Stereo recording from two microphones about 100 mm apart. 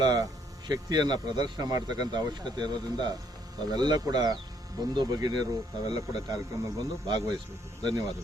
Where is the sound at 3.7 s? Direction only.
45° right (ahead or behind).